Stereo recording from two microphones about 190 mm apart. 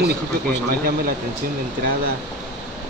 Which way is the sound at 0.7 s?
50° right (ahead or behind).